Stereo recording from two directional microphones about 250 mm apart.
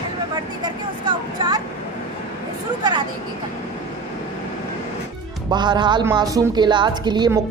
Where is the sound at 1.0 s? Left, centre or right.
Centre.